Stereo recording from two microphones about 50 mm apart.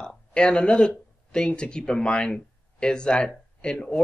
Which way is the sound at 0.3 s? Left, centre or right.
Centre.